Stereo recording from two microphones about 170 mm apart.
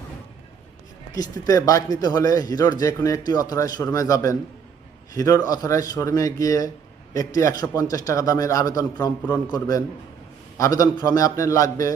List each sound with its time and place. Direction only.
1.1 s speech: 20° left (ahead or behind)